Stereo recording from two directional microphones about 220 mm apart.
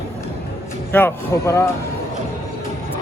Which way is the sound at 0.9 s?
10° left (ahead or behind).